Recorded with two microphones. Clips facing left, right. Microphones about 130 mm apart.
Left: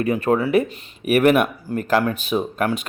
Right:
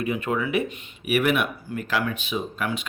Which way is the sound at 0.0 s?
40° left (ahead or behind).